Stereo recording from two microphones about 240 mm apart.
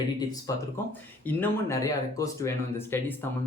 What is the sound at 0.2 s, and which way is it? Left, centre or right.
Speech, centre.